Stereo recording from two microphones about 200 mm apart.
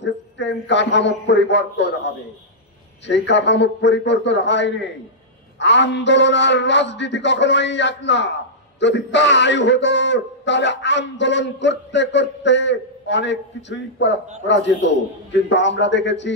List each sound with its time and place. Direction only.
0.0 s a man's voice: 60° left (ahead or behind)